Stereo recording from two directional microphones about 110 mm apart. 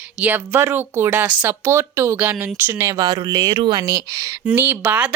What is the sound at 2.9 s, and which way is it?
A woman's voice, 40° right (ahead or behind).